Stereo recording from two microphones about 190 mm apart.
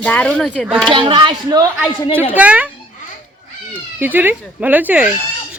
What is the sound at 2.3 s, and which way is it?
Speech, 10° right (ahead or behind).